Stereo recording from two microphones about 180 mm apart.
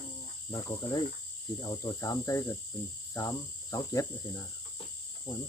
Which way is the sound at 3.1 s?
20° left (ahead or behind).